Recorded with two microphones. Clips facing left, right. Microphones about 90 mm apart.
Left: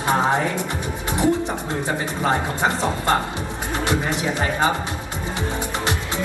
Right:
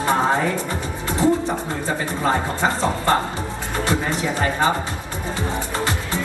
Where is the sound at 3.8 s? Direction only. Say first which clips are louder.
Even; 20° left (ahead or behind).